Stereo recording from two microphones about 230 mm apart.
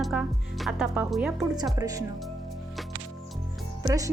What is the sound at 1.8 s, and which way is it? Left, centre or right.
Speech, centre.